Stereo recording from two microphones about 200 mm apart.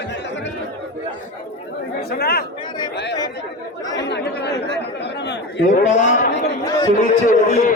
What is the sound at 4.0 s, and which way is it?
Chatter, 60° left (ahead or behind).